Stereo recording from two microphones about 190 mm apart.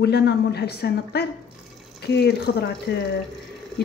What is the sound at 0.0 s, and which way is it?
Speech, 60° left (ahead or behind).